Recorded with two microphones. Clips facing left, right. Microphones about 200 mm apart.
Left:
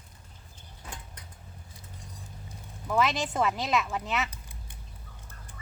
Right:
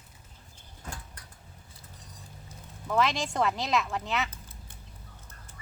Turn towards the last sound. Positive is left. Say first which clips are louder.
# even
turn(degrees=0)  # may be behind; listen again after turning